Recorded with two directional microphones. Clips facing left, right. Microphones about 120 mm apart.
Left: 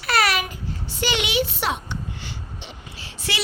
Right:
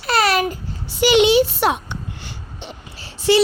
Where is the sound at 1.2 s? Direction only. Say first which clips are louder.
Right 9 dB; 35° right (ahead or behind).